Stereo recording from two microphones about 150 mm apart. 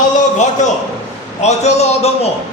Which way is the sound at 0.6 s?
50° left (ahead or behind).